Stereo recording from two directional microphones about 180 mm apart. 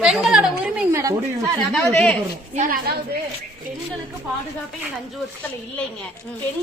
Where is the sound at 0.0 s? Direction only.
5° right (ahead or behind).